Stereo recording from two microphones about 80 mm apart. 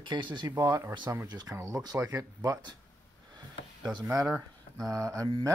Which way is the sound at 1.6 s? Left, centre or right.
Right.